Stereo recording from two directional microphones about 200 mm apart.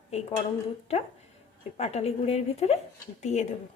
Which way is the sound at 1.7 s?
30° left (ahead or behind).